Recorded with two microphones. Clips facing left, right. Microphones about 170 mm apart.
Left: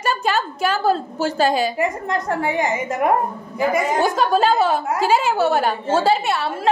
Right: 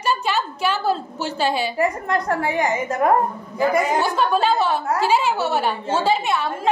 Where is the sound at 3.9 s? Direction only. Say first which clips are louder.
Left 2 dB; 45° left (ahead or behind).